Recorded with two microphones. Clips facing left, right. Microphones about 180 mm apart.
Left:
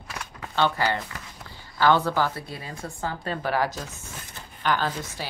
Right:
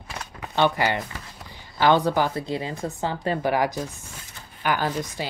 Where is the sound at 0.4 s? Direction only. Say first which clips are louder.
Right 3 dB; 15° right (ahead or behind).